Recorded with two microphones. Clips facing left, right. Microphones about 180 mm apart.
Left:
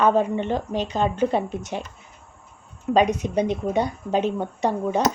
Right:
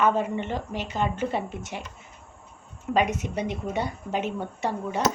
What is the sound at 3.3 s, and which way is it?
Speech, 20° left (ahead or behind).